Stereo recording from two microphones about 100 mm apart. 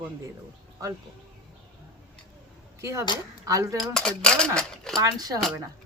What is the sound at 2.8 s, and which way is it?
Speech, 30° right (ahead or behind).